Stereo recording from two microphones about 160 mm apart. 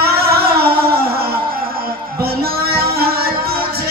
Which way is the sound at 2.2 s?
75° right (ahead or behind).